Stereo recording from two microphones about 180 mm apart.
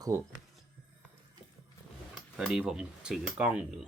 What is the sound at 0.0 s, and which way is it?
Speech, 15° right (ahead or behind).